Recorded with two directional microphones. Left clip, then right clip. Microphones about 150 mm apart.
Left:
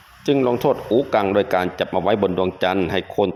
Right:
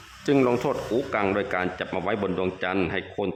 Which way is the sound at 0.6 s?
25° left (ahead or behind).